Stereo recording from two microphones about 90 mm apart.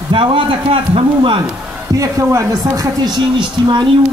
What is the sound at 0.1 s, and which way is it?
A man's voice, 70° right (ahead or behind).